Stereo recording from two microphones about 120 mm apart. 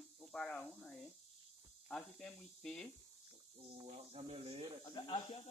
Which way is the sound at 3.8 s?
55° right (ahead or behind).